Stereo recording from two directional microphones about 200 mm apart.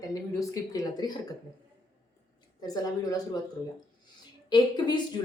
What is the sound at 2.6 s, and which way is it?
Speech, 20° left (ahead or behind).